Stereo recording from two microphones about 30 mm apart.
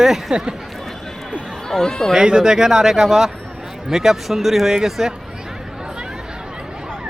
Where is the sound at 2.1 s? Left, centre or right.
Right.